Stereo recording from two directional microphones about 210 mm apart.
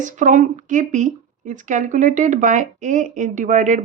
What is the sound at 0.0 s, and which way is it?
Speech, 35° right (ahead or behind).